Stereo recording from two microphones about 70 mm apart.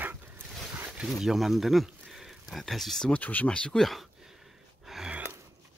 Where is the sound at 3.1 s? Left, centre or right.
Left; by 4.3 s centre.